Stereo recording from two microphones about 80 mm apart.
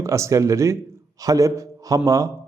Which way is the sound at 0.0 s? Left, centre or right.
Right.